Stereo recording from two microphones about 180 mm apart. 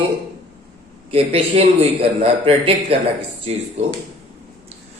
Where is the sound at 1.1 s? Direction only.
30° right (ahead or behind).